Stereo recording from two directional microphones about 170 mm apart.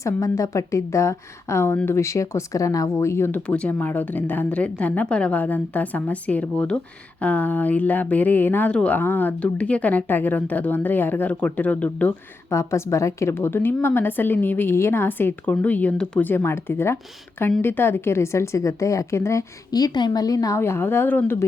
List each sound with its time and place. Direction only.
0.0 s speech: 20° left (ahead or behind)